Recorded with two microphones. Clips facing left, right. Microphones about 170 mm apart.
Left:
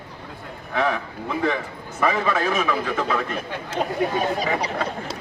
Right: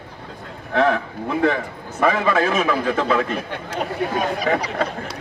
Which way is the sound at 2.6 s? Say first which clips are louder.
Right 3 dB; 50° right (ahead or behind).